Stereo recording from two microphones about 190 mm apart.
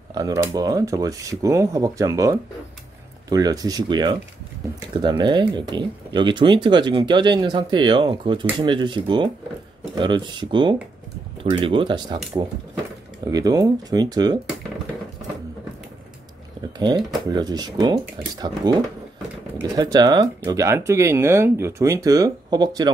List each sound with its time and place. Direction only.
0.1 s speech: 20° right (ahead or behind)
13.2 s speech: 20° right (ahead or behind)
16.7 s speech: 25° right (ahead or behind)